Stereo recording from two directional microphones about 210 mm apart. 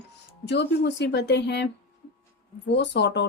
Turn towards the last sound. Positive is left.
turn(degrees=55)  # may be behind; listen again after turning